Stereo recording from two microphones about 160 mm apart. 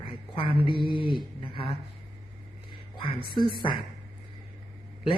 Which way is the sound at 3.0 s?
30° left (ahead or behind).